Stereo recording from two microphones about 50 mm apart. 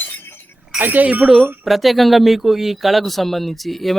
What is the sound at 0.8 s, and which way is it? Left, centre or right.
Speech, right.